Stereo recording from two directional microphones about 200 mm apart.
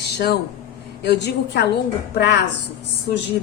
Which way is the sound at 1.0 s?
55° left (ahead or behind).